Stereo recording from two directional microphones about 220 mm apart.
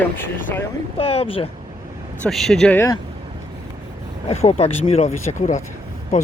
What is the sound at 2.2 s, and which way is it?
Speech, centre (ahead or behind).